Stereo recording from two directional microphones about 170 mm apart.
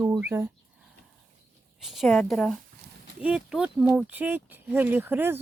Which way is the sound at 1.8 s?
Centre (ahead or behind).